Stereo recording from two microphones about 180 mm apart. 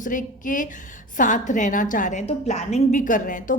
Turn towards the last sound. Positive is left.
turn(degrees=45)  # may be behind; listen again after turning